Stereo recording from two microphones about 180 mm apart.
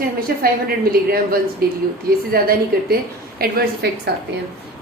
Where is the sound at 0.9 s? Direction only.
55° right (ahead or behind).